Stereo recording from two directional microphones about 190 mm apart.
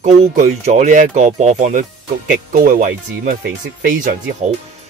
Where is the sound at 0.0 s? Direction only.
35° right (ahead or behind).